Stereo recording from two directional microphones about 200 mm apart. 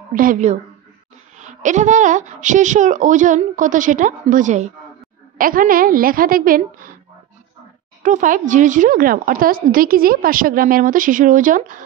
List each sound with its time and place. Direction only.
0.1 s a woman's voice: 45° right (ahead or behind)
8.0 s speech: 40° right (ahead or behind)